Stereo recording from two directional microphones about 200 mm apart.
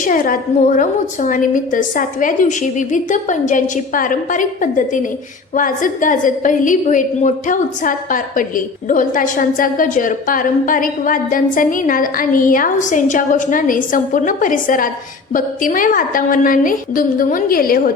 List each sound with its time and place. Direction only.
0.0 s a woman's voice: 45° left (ahead or behind)